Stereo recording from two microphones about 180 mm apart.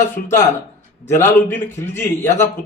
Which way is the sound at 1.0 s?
15° left (ahead or behind).